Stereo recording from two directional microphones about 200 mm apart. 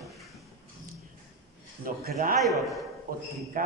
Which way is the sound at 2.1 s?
45° right (ahead or behind).